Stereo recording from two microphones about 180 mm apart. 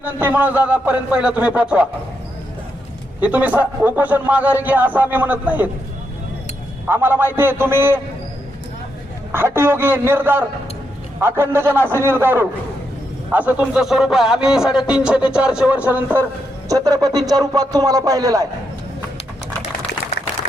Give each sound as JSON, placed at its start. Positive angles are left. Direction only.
{"t": 0.0, "sound": "a man's voice", "side_deg": -10}
{"t": 3.2, "sound": "a man's voice", "side_deg": -10}
{"t": 6.8, "sound": "a man's voice", "side_deg": -10}
{"t": 9.3, "sound": "a man's voice", "side_deg": -15}